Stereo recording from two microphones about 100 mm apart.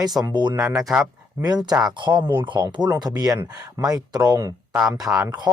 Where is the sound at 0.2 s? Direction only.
50° right (ahead or behind).